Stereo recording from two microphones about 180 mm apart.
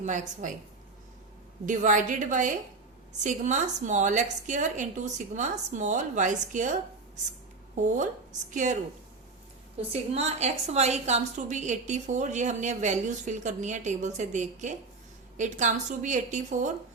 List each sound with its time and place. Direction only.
0.0 s a woman's voice: 45° right (ahead or behind)
1.6 s a woman's voice: 45° right (ahead or behind)
7.9 s a woman's voice: 45° right (ahead or behind)
9.9 s a woman's voice: 35° right (ahead or behind)